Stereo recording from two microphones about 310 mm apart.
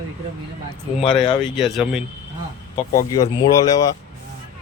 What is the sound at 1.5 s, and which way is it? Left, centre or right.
Speech, centre.